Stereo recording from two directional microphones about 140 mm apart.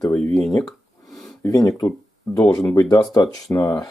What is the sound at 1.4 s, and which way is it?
Speech, 25° left (ahead or behind).